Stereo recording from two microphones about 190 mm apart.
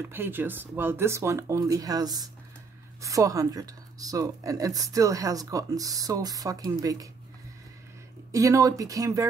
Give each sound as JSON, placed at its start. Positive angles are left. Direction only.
{"t": 0.1, "sound": "a woman's voice", "side_deg": -10}
{"t": 8.3, "sound": "speech", "side_deg": -15}